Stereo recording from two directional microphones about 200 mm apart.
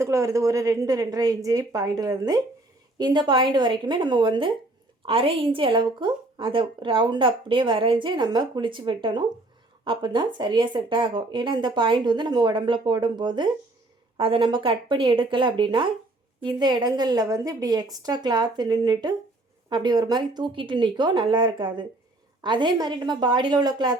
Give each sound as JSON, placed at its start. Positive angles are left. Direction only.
{"t": 0.0, "sound": "a woman's voice", "side_deg": -15}